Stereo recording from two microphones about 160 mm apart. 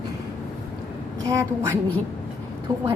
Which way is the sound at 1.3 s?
15° right (ahead or behind).